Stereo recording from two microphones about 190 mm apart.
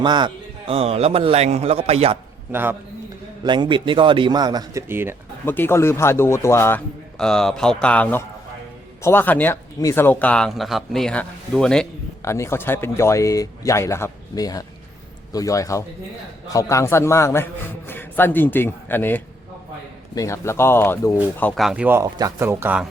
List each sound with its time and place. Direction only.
0.0 s a man's voice: 25° right (ahead or behind)
2.5 s speech: 10° right (ahead or behind)
3.4 s a man's voice: 25° right (ahead or behind)
5.5 s speech: 10° left (ahead or behind)
12.2 s speech: 15° left (ahead or behind)
21.6 s speech: 5° right (ahead or behind)